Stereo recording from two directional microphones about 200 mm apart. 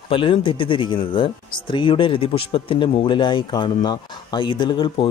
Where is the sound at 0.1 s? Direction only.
25° left (ahead or behind).